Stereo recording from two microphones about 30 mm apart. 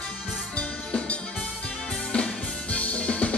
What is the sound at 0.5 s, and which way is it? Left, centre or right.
Music, left.